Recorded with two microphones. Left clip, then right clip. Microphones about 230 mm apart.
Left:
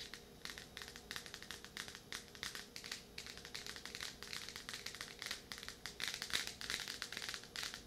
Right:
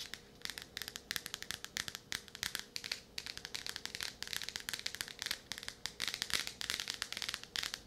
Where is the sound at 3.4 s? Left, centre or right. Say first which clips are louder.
Right 5 dB; right.